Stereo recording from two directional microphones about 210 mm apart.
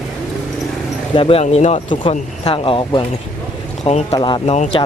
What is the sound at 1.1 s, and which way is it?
Speech, 25° left (ahead or behind).